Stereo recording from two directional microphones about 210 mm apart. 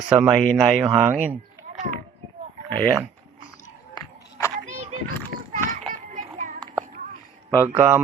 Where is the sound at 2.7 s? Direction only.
5° left (ahead or behind).